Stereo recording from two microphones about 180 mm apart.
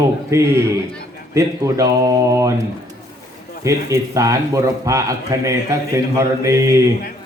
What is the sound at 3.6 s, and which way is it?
A man's voice, 15° right (ahead or behind).